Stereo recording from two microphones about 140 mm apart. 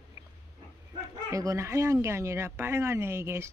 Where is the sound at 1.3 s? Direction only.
25° right (ahead or behind).